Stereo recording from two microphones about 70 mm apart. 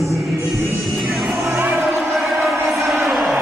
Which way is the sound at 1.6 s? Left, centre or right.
Right.